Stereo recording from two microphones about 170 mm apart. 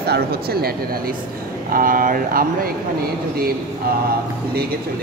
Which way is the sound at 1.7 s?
55° right (ahead or behind).